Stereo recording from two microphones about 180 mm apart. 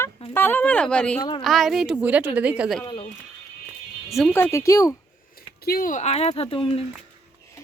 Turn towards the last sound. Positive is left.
turn(degrees=30)  # may be behind; listen again after turning